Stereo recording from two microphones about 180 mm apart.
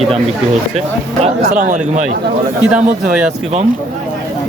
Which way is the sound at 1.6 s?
45° right (ahead or behind).